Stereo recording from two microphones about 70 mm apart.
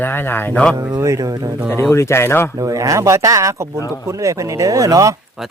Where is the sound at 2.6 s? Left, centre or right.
Right.